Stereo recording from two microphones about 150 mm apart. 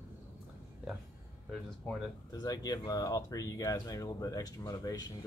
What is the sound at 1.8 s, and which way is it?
Speech, 5° left (ahead or behind).